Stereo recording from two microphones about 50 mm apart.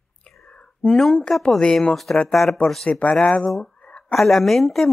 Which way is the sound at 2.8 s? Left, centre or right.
Left.